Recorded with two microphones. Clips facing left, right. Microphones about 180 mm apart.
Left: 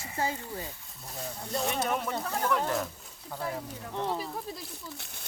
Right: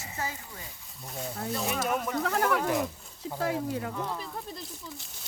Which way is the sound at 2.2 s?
85° right.